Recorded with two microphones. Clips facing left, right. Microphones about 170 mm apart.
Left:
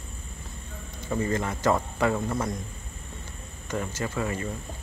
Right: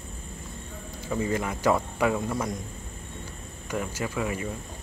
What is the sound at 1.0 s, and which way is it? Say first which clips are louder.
Speech: even; 10° right (ahead or behind).